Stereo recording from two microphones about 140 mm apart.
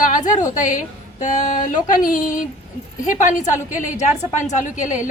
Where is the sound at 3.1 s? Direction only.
65° left (ahead or behind).